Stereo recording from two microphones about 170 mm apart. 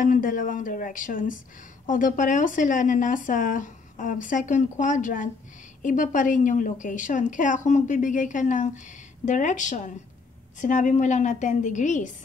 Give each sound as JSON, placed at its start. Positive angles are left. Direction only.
{"t": 0.0, "sound": "speech", "side_deg": 50}